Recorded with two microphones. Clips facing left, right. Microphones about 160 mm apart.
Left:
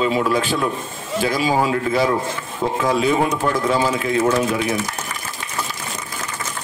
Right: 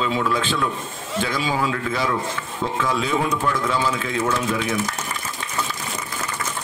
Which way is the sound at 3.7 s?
35° left (ahead or behind).